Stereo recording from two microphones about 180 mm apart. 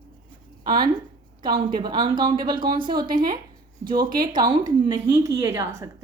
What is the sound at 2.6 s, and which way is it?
Speech, 50° right (ahead or behind).